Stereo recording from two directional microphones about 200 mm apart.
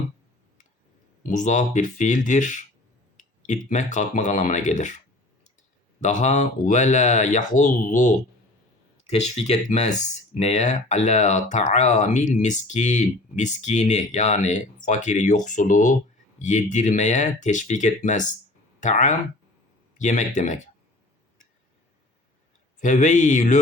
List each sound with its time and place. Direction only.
1.2 s speech: 40° left (ahead or behind)
6.0 s speech: 35° left (ahead or behind)
22.8 s speech: 40° left (ahead or behind)